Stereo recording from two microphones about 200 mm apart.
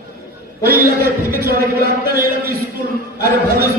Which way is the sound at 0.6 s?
50° right (ahead or behind).